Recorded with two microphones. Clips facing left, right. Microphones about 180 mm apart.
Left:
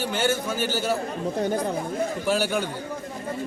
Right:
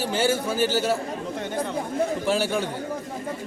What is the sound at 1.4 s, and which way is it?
Speech, 40° left (ahead or behind).